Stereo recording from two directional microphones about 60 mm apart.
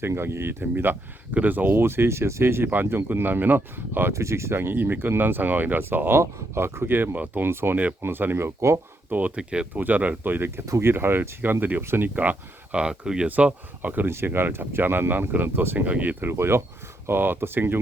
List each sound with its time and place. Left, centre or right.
0.1 s speech: right
4.1 s speech: right
6.1 s speech: right
10.7 s speech: right
12.0 s speech: right
12.8 s speech: centre
13.2 s speech: right
14.1 s speech: right
15.9 s speech: right
16.2 s speech: right